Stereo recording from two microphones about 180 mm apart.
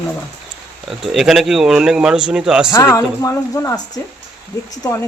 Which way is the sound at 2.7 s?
15° left (ahead or behind).